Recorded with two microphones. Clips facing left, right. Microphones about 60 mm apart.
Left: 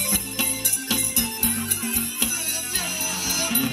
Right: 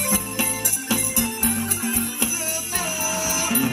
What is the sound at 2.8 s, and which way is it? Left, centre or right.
Music, centre.